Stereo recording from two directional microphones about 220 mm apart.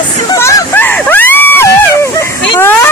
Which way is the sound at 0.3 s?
10° left (ahead or behind).